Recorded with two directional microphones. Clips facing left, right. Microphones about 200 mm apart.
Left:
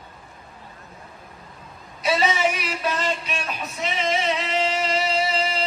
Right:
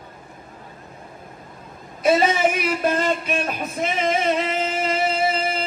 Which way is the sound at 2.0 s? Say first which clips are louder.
Right 4 dB; 50° right (ahead or behind).